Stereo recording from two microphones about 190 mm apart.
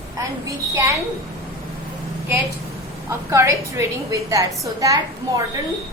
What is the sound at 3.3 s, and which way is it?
A woman's voice, 15° right (ahead or behind).